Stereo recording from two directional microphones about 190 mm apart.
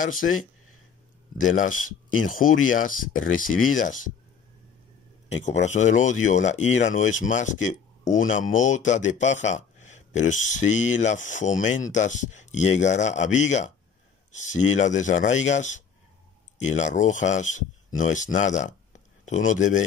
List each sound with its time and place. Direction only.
0.0 s speech: 45° left (ahead or behind)
1.4 s speech: 90° left
1.7 s speech: 45° left (ahead or behind)
5.3 s speech: 40° left (ahead or behind)